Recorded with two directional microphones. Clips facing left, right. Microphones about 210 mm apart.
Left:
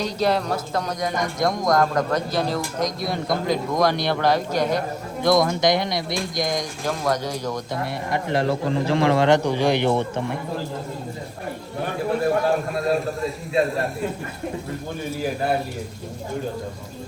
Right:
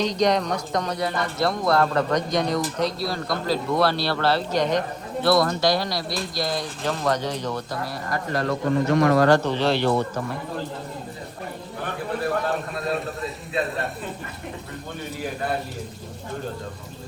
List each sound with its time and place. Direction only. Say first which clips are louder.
0.0 s a man's voice: right 1 dB; 5° left (ahead or behind)
7.7 s a man's voice: left 3 dB; 25° left (ahead or behind)
12.5 s a man's voice: left 5 dB; centre (ahead or behind)